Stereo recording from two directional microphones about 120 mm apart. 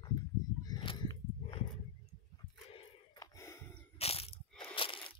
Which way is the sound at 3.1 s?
30° left (ahead or behind).